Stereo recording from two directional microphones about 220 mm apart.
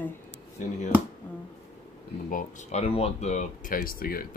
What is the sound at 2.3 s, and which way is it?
Speech, 35° left (ahead or behind).